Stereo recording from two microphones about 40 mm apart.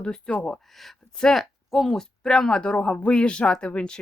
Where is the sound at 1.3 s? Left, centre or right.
Centre; by 4.0 s left.